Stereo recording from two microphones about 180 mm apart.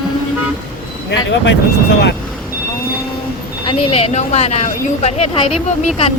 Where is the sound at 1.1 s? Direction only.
90° left.